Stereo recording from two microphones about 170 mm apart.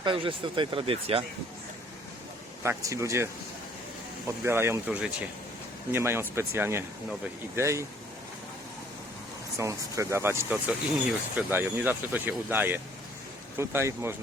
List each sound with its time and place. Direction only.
0.0 s speech: 30° right (ahead or behind)
2.6 s speech: 15° right (ahead or behind)
4.3 s speech: 15° right (ahead or behind)
9.6 s speech: 20° right (ahead or behind)